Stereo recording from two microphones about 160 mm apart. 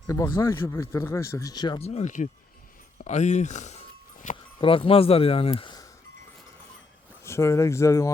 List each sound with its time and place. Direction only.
0.1 s speech: 15° left (ahead or behind)
1.9 s speech: 45° left (ahead or behind)
4.6 s speech: 35° left (ahead or behind)
7.3 s speech: 15° left (ahead or behind)